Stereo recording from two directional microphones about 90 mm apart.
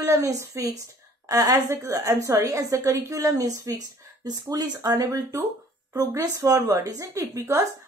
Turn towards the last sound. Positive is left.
turn(degrees=-35)  # may be behind; listen again after turning